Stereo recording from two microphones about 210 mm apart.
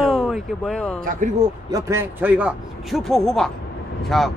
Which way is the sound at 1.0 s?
35° right (ahead or behind).